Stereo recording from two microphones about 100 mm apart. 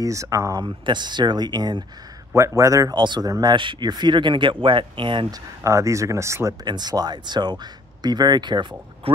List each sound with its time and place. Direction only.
0.0 s speech: 30° right (ahead or behind)
0.6 s speech: 50° right (ahead or behind)
2.3 s speech: 30° right (ahead or behind)
3.0 s speech: 45° right (ahead or behind)
3.5 s speech: 50° right (ahead or behind)
5.3 s speech: 30° right (ahead or behind)
6.6 s speech: 45° right (ahead or behind)